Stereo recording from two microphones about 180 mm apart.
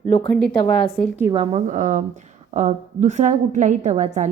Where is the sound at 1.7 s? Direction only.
45° right (ahead or behind).